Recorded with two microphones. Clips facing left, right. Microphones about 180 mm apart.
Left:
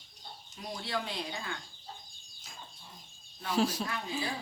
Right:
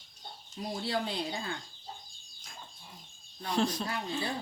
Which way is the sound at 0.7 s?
30° right (ahead or behind).